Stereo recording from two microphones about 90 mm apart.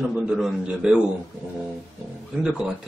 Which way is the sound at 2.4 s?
10° right (ahead or behind).